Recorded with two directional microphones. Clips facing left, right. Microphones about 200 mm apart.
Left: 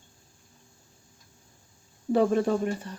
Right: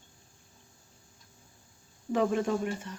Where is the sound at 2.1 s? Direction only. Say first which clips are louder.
Left 5 dB; 35° left (ahead or behind).